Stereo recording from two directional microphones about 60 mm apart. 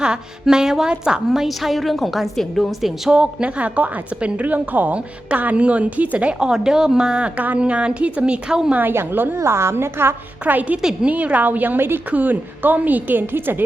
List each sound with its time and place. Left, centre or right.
0.0 s a woman's voice: centre
3.1 s a woman's voice: centre
8.7 s a woman's voice: right
9.4 s a woman's voice: right
10.4 s a woman's voice: right